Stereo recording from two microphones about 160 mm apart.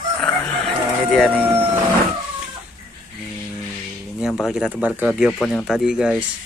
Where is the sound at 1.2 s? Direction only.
Centre (ahead or behind).